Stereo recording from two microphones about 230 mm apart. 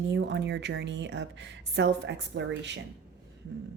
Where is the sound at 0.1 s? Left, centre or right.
Right.